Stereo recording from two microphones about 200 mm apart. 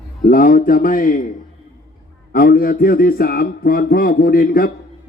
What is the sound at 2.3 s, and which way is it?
A man's voice, 45° left (ahead or behind).